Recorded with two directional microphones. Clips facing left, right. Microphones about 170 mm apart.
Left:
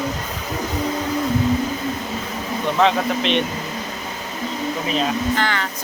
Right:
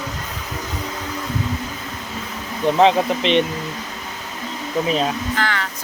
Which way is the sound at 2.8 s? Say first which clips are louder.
Right 3 dB; 25° right (ahead or behind).